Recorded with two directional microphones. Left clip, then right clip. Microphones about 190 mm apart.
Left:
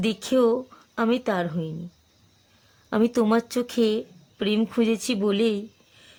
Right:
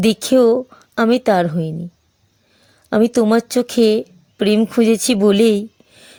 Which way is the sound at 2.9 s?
25° right (ahead or behind).